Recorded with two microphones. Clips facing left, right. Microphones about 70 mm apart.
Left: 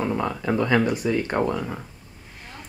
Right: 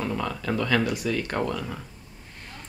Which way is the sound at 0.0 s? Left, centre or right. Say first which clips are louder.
Left 4 dB; centre.